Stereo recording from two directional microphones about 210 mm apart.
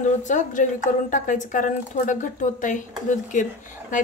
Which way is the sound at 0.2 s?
35° left (ahead or behind).